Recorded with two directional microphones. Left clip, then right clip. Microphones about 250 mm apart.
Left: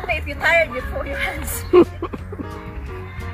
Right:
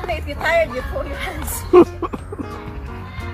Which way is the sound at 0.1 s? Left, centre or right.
Centre.